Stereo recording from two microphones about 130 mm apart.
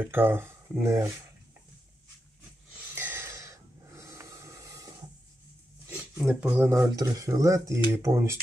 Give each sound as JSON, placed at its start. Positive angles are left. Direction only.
{"t": 0.0, "sound": "speech", "side_deg": -15}
{"t": 2.9, "sound": "snort", "side_deg": -15}
{"t": 5.9, "sound": "a sound", "side_deg": -10}
{"t": 6.4, "sound": "speech", "side_deg": -15}